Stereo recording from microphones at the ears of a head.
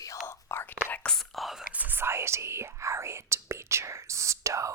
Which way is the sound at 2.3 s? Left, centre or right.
Right.